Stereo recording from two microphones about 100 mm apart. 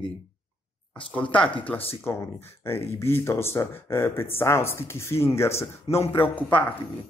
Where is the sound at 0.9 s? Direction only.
15° left (ahead or behind).